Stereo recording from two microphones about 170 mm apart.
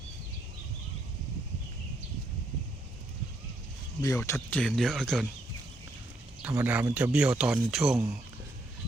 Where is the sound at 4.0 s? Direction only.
15° left (ahead or behind).